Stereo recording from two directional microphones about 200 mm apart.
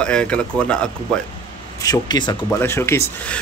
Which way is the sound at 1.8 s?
20° left (ahead or behind).